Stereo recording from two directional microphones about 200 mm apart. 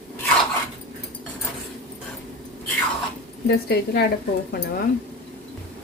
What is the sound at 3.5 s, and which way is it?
Speech, 55° left (ahead or behind).